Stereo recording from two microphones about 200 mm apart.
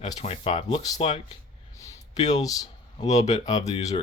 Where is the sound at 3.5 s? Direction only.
35° left (ahead or behind).